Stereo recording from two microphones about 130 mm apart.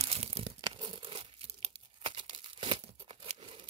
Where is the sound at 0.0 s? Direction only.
50° right (ahead or behind).